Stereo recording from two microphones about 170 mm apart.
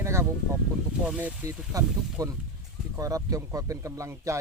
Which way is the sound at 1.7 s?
20° right (ahead or behind).